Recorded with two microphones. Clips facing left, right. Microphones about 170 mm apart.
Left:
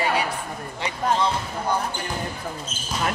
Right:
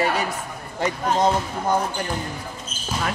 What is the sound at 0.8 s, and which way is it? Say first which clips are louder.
Speech: right 3 dB; 45° right (ahead or behind).